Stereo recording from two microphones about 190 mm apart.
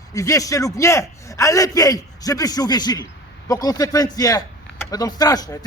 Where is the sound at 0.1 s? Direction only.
15° left (ahead or behind).